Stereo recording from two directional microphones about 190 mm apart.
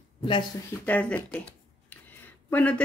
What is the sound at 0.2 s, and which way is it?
Speech, 25° left (ahead or behind).